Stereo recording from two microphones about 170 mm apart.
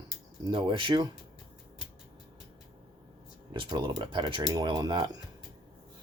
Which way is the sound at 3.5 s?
30° right (ahead or behind).